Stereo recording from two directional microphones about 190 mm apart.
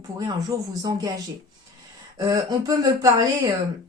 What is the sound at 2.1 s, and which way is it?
Speech, 20° right (ahead or behind).